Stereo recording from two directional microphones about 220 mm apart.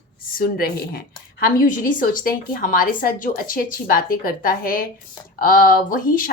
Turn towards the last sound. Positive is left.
turn(degrees=40)  # may be behind; listen again after turning